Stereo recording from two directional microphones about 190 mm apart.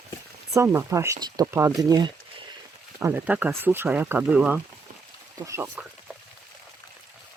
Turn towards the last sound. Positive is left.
turn(degrees=-15)  # may be behind; listen again after turning